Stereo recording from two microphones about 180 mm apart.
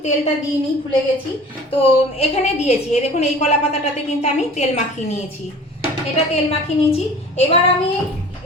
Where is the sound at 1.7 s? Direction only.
35° left (ahead or behind).